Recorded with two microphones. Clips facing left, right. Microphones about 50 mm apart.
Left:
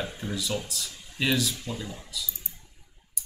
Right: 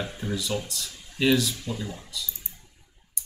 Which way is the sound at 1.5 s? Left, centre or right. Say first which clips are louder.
Right 2 dB; left.